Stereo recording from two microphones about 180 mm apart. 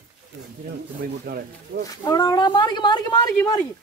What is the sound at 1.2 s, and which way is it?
Speech, 55° right (ahead or behind).